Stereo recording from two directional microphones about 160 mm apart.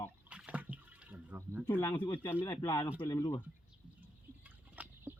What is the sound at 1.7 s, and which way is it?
Speech, 25° left (ahead or behind).